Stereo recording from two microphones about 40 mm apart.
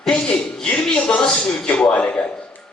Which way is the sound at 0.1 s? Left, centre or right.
Left.